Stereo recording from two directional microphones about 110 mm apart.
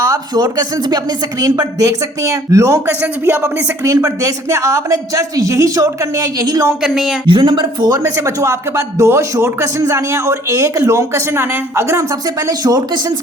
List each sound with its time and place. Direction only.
0.1 s a man's voice: 35° right (ahead or behind)
3.0 s speech: 15° right (ahead or behind)
3.8 s a man's voice: 30° right (ahead or behind)
6.8 s speech: centre (ahead or behind)
7.3 s a man's voice: 50° right (ahead or behind); by 12.0 s 25° right (ahead or behind)
12.5 s speech: 35° right (ahead or behind)